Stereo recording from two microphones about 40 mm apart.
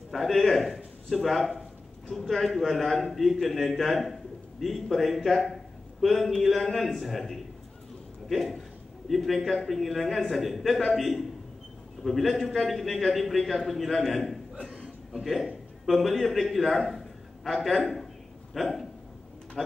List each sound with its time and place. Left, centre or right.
0.1 s a man's voice: centre
14.7 s chuckle: centre
15.8 s a man's voice: centre